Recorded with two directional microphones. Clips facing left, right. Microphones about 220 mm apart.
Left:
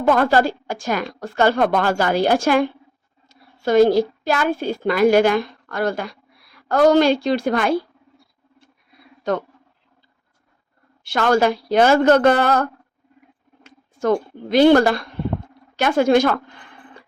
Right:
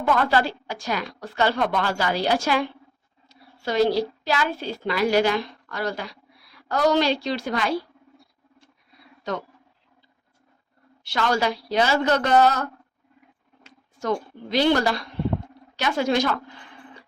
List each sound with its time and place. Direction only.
0.0 s a woman's voice: 45° left (ahead or behind)
11.0 s a woman's voice: 50° left (ahead or behind)
13.7 s speech: 55° left (ahead or behind)